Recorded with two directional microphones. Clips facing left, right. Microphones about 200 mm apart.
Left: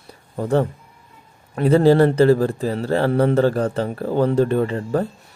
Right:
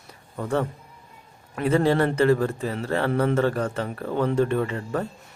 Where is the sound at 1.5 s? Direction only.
35° left (ahead or behind).